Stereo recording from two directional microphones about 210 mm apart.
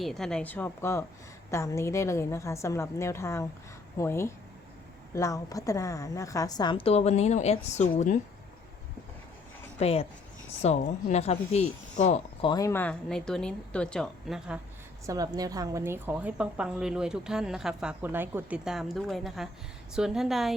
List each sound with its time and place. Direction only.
0.0 s a woman's voice: centre (ahead or behind); by 8.2 s 35° left (ahead or behind)
9.7 s a woman's voice: 30° left (ahead or behind)
12.4 s a woman's voice: 20° left (ahead or behind); by 14.6 s 5° right (ahead or behind)
15.0 s a woman's voice: 15° right (ahead or behind); by 20.6 s centre (ahead or behind)